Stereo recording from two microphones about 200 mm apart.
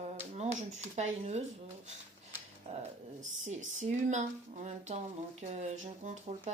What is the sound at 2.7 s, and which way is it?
Speech, 35° right (ahead or behind).